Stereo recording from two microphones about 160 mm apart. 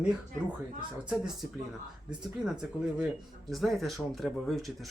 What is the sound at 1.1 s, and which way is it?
Speech, 5° right (ahead or behind).